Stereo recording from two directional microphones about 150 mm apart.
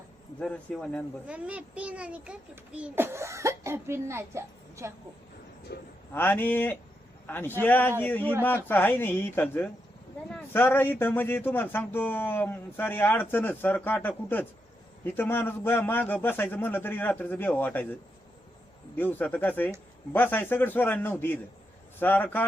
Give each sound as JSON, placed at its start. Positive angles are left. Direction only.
{"t": 0.3, "sound": "speech", "side_deg": 5}
{"t": 1.3, "sound": "a child's voice", "side_deg": -10}
{"t": 5.7, "sound": "speech", "side_deg": 90}
{"t": 6.1, "sound": "speech", "side_deg": 15}
{"t": 18.9, "sound": "speech", "side_deg": 10}